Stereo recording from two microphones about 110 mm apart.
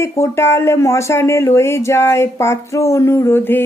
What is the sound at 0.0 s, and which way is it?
Speech, 25° left (ahead or behind).